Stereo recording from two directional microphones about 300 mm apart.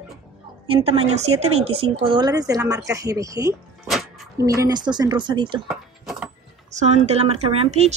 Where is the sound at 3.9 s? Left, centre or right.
Centre.